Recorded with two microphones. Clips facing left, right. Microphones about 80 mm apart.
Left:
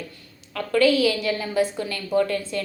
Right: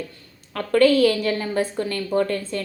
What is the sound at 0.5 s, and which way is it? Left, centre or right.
A woman's voice, right.